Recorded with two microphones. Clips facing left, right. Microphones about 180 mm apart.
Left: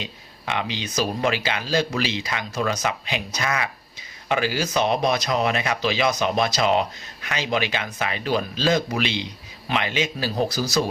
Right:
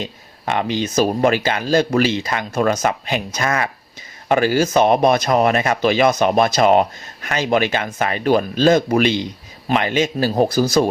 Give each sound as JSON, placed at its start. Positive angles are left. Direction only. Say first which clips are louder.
{"t": 0.0, "sound": "speech", "louder": "right 7 dB", "side_deg": -45}